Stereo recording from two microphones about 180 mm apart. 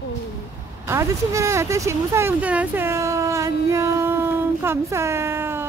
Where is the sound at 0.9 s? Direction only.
15° right (ahead or behind).